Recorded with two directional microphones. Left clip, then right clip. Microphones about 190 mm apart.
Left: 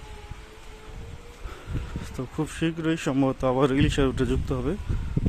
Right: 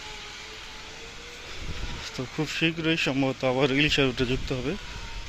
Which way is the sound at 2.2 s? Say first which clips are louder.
Right 2 dB; 25° left (ahead or behind).